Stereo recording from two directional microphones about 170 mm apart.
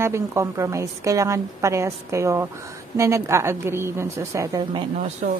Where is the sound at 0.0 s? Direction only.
15° right (ahead or behind).